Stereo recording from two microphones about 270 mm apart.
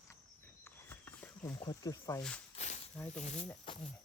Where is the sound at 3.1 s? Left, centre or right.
Left.